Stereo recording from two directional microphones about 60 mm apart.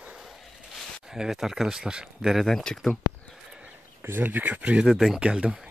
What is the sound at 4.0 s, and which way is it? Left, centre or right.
Speech, right.